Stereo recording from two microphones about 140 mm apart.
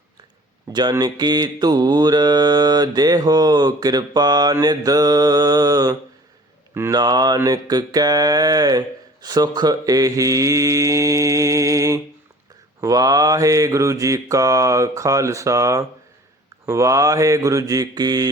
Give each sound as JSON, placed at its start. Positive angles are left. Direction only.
{"t": 0.7, "sound": "mantra", "side_deg": -30}
{"t": 6.7, "sound": "speech", "side_deg": -20}
{"t": 7.0, "sound": "mantra", "side_deg": -30}